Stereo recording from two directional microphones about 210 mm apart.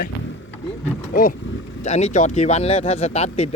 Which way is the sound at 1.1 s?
40° left (ahead or behind).